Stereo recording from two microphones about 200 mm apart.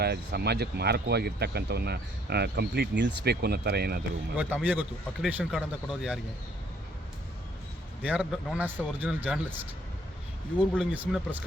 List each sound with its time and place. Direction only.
0.0 s speech: 55° right (ahead or behind)
4.4 s speech: 5° right (ahead or behind)
8.0 s speech: 5° right (ahead or behind)
10.9 s speech: 10° right (ahead or behind)